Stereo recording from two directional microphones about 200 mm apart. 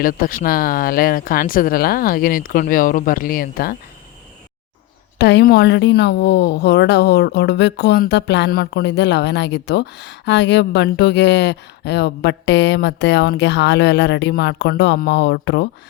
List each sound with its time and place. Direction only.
0.0 s speech: 45° left (ahead or behind)
5.1 s a woman's voice: 55° left (ahead or behind)